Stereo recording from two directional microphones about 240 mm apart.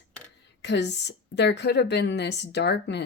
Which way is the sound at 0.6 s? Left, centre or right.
Left.